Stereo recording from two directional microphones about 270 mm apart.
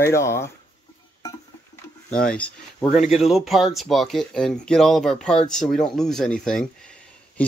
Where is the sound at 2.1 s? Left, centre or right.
Centre.